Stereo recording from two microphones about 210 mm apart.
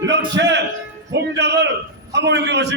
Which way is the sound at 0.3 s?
55° right (ahead or behind).